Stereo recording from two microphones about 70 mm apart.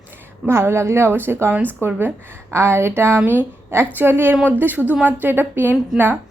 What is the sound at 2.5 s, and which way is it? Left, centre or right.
A woman's voice, right.